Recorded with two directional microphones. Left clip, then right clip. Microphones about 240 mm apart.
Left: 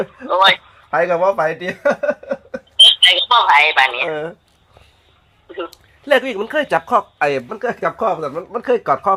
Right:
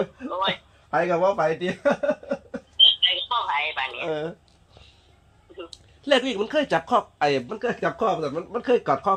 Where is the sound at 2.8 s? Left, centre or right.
Left.